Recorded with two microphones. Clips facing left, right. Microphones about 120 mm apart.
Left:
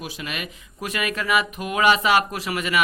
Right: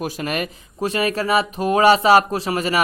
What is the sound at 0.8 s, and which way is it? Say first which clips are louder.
Speech: right 6 dB; 30° right (ahead or behind).